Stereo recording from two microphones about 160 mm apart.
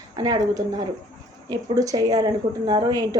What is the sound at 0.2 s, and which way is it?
A woman's voice, 20° right (ahead or behind).